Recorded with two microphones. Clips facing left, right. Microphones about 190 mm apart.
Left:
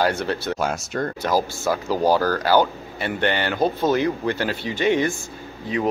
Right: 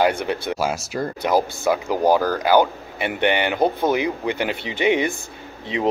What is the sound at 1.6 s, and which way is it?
Speech, 15° right (ahead or behind).